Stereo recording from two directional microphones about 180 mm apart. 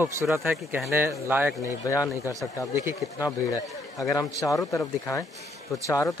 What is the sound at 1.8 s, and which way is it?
A man's voice, 15° left (ahead or behind).